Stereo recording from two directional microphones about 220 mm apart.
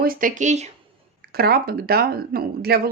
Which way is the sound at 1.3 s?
45° right (ahead or behind).